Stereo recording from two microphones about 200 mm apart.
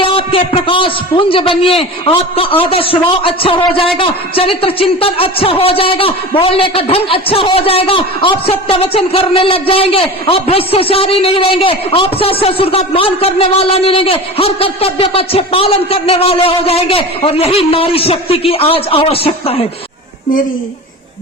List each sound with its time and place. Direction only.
0.0 s speech: 25° left (ahead or behind)